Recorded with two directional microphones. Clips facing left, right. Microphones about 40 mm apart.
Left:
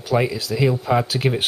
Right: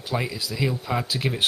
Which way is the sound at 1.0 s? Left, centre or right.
Left.